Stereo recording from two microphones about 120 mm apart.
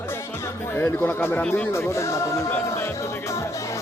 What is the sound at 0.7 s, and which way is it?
A man's voice, 20° left (ahead or behind).